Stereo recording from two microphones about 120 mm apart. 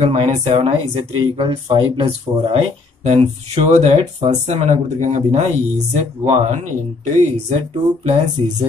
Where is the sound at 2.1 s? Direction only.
55° right (ahead or behind).